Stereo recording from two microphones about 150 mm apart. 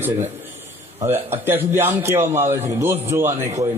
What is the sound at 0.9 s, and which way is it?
A man's voice, 15° right (ahead or behind).